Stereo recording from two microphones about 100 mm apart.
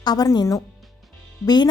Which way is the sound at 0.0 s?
40° left (ahead or behind).